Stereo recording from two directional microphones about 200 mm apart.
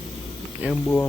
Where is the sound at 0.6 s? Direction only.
5° right (ahead or behind).